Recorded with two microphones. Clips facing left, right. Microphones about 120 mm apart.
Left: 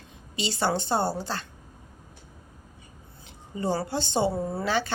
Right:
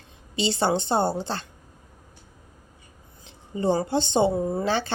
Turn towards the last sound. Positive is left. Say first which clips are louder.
# right 2 dB
turn(degrees=-30)  # may be behind; listen again after turning